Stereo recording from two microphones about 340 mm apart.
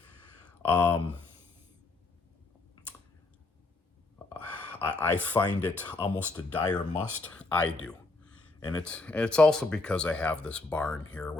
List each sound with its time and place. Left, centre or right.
0.6 s speech: centre
4.4 s speech: centre